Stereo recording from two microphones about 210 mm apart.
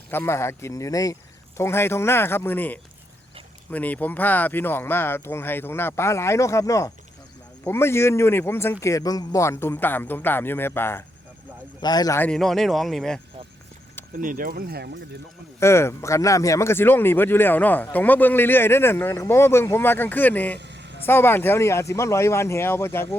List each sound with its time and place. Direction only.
0.1 s speech: 10° left (ahead or behind)
14.1 s speech: 40° right (ahead or behind)
15.6 s speech: 10° left (ahead or behind)
20.6 s a sound: 55° right (ahead or behind)
21.0 s speech: 10° left (ahead or behind)